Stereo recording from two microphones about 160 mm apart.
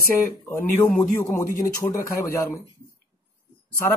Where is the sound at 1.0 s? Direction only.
15° left (ahead or behind).